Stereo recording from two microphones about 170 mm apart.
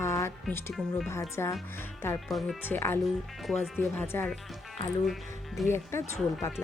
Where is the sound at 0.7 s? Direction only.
Centre (ahead or behind).